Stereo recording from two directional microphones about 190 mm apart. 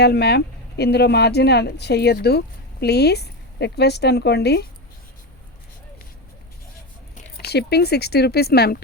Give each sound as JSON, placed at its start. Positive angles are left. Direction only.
{"t": 0.0, "sound": "speech", "side_deg": 60}
{"t": 7.3, "sound": "speech", "side_deg": 55}